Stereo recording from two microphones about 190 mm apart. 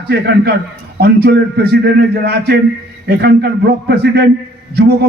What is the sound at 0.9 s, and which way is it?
A man's voice, 60° right (ahead or behind).